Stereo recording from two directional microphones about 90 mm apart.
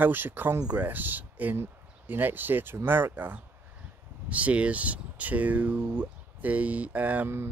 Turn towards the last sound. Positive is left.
turn(degrees=-20)  # may be behind; listen again after turning